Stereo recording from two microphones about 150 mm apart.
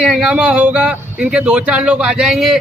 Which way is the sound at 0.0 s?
5° right (ahead or behind).